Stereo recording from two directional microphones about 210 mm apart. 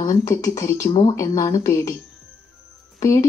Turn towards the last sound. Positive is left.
turn(degrees=15)  # may be behind; listen again after turning